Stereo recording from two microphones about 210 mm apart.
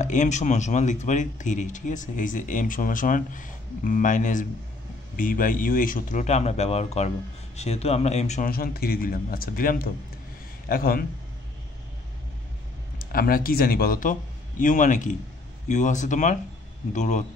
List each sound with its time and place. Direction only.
0.0 s speech: 35° left (ahead or behind)
8.5 s speech: 45° left (ahead or behind)
13.0 s speech: 45° left (ahead or behind)